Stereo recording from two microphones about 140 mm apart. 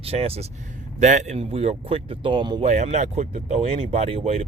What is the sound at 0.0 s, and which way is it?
Speech, 45° right (ahead or behind).